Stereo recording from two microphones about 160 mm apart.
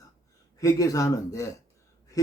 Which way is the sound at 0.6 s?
20° left (ahead or behind).